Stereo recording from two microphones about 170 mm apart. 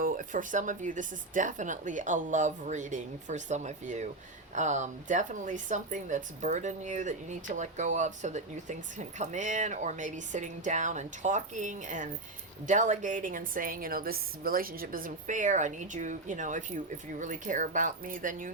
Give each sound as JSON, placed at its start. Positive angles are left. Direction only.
{"t": 0.0, "sound": "speech", "side_deg": -50}